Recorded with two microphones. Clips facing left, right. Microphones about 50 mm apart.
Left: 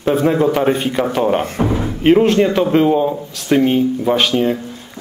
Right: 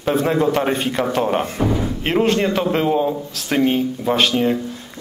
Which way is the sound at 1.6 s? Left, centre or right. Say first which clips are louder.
Left 2 dB; left.